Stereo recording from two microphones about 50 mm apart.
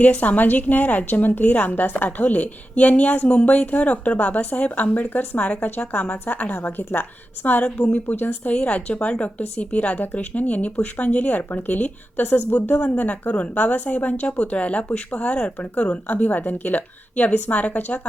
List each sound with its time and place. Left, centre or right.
0.0 s a woman's voice: left
5.6 s a woman's voice: left
8.0 s speech: left
8.4 s a woman's voice: left